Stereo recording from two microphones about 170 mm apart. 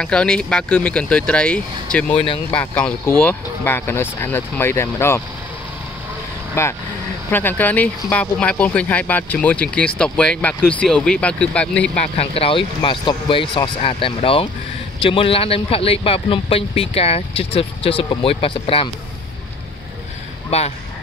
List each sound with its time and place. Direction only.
0.0 s speech: 5° left (ahead or behind)
6.6 s speech: 15° left (ahead or behind)
12.2 s speech: 35° left (ahead or behind)
20.4 s speech: 40° left (ahead or behind)